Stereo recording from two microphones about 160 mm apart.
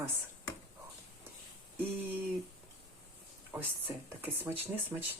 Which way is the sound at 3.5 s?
10° right (ahead or behind).